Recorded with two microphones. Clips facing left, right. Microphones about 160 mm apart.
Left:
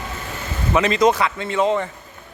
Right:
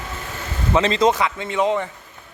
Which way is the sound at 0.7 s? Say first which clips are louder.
Left 1 dB; 25° right (ahead or behind).